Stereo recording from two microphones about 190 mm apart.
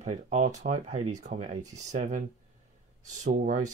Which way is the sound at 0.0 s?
40° right (ahead or behind).